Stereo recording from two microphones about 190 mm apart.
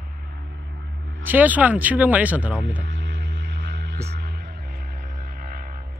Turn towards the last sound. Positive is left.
turn(degrees=-50)  # may be behind; listen again after turning